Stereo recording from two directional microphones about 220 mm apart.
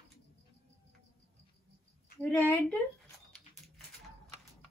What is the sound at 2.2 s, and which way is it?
Speech, 5° left (ahead or behind).